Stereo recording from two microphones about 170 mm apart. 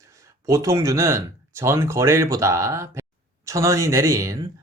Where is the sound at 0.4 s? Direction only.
20° right (ahead or behind).